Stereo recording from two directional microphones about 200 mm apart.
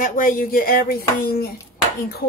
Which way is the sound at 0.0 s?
45° left (ahead or behind).